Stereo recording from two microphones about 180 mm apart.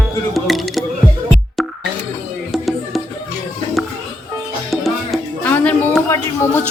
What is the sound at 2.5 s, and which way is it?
Music, centre (ahead or behind).